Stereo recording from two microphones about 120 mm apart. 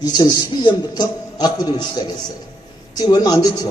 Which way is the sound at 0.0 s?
35° left (ahead or behind).